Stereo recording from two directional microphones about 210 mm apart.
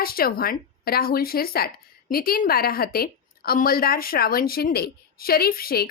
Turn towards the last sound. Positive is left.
turn(degrees=45)  # may be behind; listen again after turning